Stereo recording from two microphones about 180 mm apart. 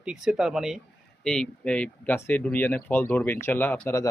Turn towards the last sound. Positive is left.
turn(degrees=15)  # may be behind; listen again after turning